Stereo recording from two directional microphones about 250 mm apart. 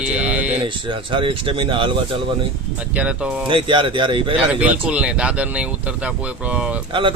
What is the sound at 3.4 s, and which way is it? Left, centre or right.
Speech, right.